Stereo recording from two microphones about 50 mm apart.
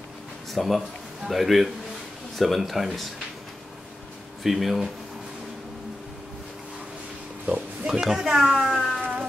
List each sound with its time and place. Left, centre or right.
0.5 s speech: centre
4.4 s speech: centre
7.4 s speech: right
8.0 s speech: centre
8.4 s speech: centre
8.7 s cat: centre